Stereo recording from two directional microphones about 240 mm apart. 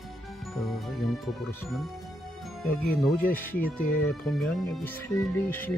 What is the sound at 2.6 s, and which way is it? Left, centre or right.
Speech, left.